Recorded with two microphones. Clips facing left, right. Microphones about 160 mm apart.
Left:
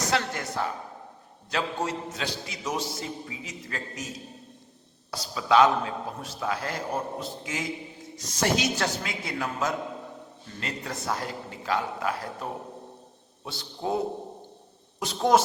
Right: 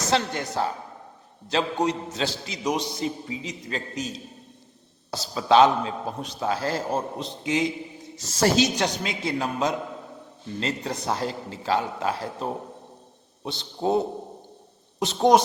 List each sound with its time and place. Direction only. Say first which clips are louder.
0.1 s a man's voice: right 6 dB; 25° right (ahead or behind)
1.5 s a man's voice: right 5 dB; 20° right (ahead or behind)
5.1 s a man's voice: right 3 dB; 30° right (ahead or behind)
8.0 s a sound: right 1 dB; centre (ahead or behind)
8.4 s a woman's voice: right 5 dB; 30° right (ahead or behind)
8.7 s a man's voice: right 3 dB; 20° right (ahead or behind)